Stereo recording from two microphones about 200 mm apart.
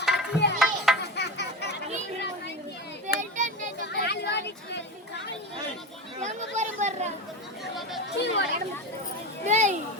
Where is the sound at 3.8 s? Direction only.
55° left (ahead or behind).